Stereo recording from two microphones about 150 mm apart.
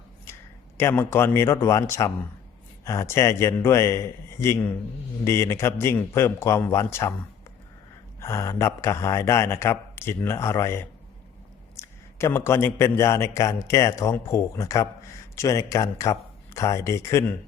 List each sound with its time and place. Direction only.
0.8 s a man's voice: 15° left (ahead or behind)
8.2 s a man's voice: 20° left (ahead or behind)